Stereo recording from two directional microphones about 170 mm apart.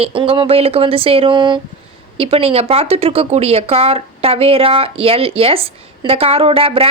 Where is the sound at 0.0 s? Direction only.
30° right (ahead or behind).